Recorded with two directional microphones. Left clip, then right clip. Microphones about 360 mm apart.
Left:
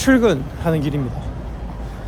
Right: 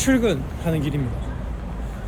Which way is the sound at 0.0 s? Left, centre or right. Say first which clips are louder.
Left 5 dB; centre.